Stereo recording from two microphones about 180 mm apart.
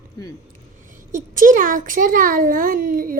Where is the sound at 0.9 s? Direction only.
45° right (ahead or behind).